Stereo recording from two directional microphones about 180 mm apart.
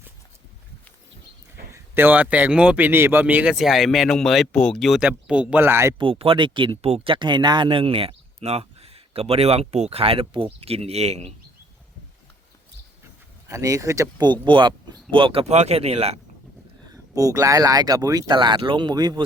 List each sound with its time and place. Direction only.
1.7 s speech: 10° right (ahead or behind)
6.0 s speech: 30° right (ahead or behind)
13.5 s speech: 15° right (ahead or behind); by 16.2 s 35° right (ahead or behind)
16.9 s speech: 20° right (ahead or behind)